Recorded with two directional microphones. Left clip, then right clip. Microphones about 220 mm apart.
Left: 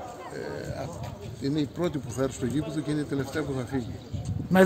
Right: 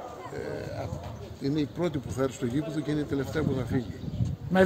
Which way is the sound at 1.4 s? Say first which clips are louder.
Left 1 dB; 10° left (ahead or behind).